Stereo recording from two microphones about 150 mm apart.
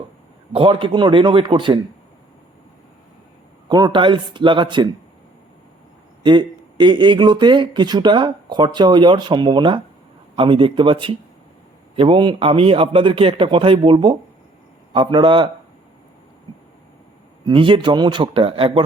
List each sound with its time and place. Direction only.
0.5 s speech: 35° right (ahead or behind)
3.7 s speech: 30° right (ahead or behind)
6.2 s speech: 30° right (ahead or behind)
17.4 s speech: 35° right (ahead or behind)